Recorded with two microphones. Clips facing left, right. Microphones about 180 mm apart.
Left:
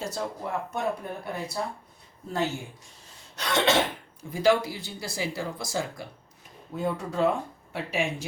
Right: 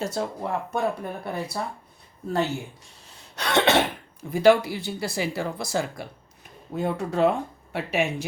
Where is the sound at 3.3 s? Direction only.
65° right (ahead or behind).